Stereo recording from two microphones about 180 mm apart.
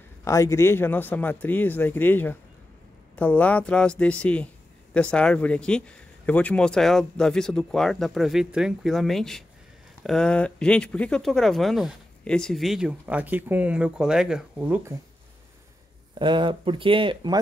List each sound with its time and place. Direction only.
0.2 s a man's voice: 15° left (ahead or behind); by 14.8 s 5° right (ahead or behind)
16.2 s speech: 25° right (ahead or behind)